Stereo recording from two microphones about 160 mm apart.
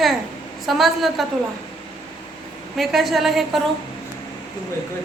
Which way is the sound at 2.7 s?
Centre (ahead or behind).